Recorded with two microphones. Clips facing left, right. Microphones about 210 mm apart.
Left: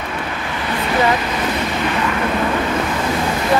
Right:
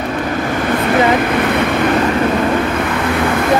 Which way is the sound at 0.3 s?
45° right (ahead or behind).